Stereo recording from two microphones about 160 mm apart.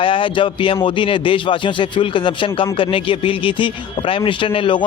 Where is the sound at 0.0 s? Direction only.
35° left (ahead or behind).